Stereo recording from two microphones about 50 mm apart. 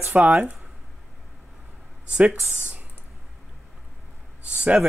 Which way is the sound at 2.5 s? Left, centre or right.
Right.